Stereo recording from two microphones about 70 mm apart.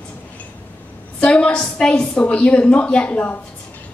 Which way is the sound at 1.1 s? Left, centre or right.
Centre.